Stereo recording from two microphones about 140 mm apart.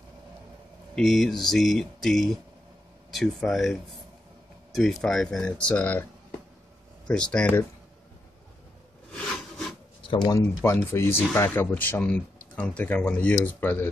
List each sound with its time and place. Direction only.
0.9 s speech: centre (ahead or behind)
4.7 s speech: centre (ahead or behind)
7.1 s speech: 5° left (ahead or behind)
9.3 s rub: 5° left (ahead or behind)
10.2 s speech: 20° left (ahead or behind)